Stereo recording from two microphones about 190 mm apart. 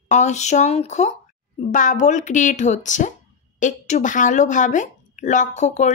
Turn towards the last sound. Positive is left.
turn(degrees=35)  # may be behind; listen again after turning